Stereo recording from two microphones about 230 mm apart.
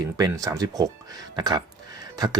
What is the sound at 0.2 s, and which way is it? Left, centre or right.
Speech, centre.